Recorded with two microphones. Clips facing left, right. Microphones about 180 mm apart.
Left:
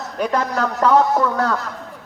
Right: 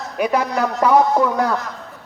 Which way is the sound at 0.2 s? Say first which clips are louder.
Right 2 dB; 10° right (ahead or behind).